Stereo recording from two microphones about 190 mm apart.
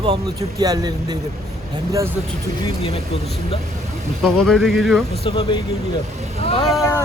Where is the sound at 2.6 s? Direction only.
30° left (ahead or behind).